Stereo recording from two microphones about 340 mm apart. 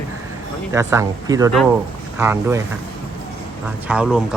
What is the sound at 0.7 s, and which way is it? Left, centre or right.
Speech, centre.